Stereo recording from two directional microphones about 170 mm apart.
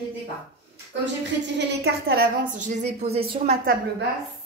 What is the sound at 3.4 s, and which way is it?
Speech, 55° right (ahead or behind).